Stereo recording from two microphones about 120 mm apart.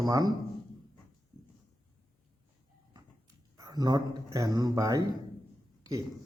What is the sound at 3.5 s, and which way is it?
Speech, 30° right (ahead or behind).